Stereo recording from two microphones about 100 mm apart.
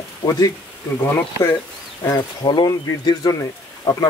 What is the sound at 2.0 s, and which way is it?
Speech, 40° left (ahead or behind).